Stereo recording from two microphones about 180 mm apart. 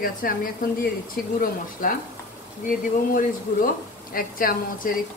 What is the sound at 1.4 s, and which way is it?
Speech, 50° left (ahead or behind).